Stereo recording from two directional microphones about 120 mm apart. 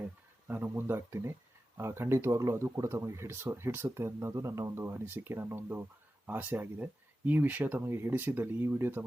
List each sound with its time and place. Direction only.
0.4 s speech: 20° right (ahead or behind)